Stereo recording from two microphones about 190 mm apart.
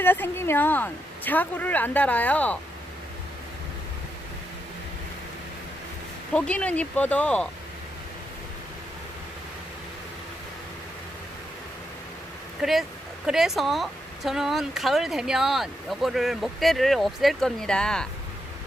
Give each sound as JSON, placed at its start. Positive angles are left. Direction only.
{"t": 0.0, "sound": "a woman's voice", "side_deg": 10}
{"t": 6.3, "sound": "a woman's voice", "side_deg": 5}
{"t": 12.6, "sound": "speech", "side_deg": 0}